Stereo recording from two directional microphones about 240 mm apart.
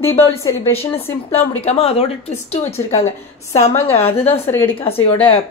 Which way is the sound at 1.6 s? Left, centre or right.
Left.